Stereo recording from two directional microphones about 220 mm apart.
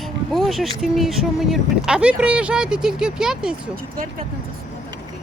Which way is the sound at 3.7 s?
40° right (ahead or behind).